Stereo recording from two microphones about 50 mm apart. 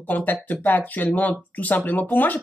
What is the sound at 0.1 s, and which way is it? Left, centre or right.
Speech, left.